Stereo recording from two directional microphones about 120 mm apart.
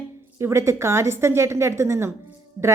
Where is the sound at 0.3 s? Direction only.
25° right (ahead or behind).